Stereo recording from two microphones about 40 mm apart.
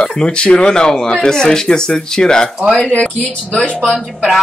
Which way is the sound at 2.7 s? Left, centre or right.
Left.